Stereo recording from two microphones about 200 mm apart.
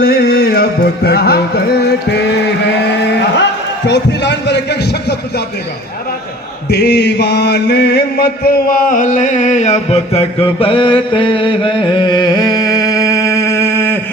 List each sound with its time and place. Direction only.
0.0 s music: 50° left (ahead or behind)
3.8 s a sound: 60° left (ahead or behind)
6.7 s chant: 55° left (ahead or behind); by 14.0 s 10° left (ahead or behind)